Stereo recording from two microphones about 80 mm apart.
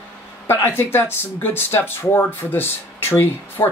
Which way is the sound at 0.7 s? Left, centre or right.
Left.